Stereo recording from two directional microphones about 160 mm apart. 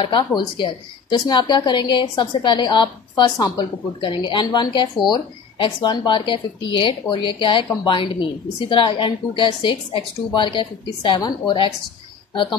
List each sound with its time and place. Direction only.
0.0 s a woman's voice: 30° left (ahead or behind)